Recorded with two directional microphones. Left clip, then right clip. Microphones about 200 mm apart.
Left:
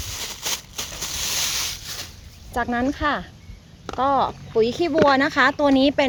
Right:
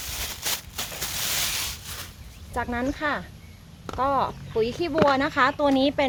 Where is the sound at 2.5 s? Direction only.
35° left (ahead or behind).